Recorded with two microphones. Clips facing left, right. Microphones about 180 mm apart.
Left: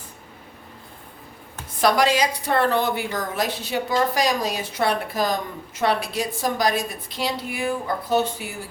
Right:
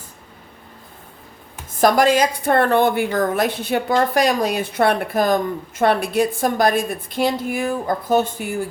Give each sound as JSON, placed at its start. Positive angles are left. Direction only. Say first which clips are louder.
{"t": 1.8, "sound": "a woman's voice", "louder": "right 4 dB", "side_deg": -50}